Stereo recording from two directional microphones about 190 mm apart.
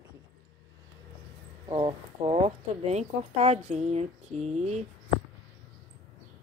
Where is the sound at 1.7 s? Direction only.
25° right (ahead or behind).